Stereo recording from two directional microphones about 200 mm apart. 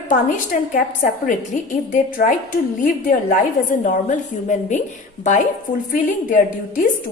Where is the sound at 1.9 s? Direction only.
40° left (ahead or behind).